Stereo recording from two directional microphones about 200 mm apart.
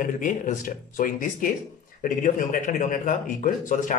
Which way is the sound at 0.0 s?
40° left (ahead or behind).